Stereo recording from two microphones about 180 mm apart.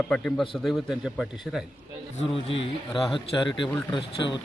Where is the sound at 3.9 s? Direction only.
25° left (ahead or behind).